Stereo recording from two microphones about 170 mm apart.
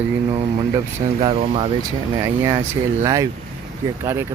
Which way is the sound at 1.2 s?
35° right (ahead or behind).